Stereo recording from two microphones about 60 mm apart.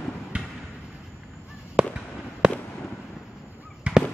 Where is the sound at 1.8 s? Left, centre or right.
Centre.